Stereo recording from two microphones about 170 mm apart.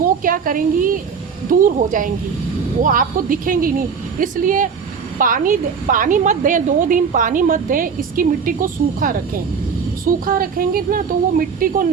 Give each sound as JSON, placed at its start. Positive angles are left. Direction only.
{"t": 0.0, "sound": "a woman's voice", "side_deg": -55}